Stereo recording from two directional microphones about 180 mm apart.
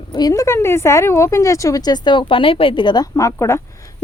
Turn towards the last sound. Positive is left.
turn(degrees=15)  # may be behind; listen again after turning